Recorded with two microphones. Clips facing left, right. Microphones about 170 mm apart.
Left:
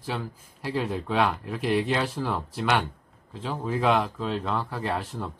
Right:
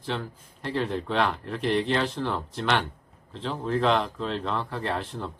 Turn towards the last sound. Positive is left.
turn(degrees=0)  # may be behind; listen again after turning